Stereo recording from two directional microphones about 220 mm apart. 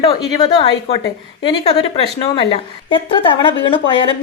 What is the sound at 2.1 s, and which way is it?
A woman's voice, 25° left (ahead or behind).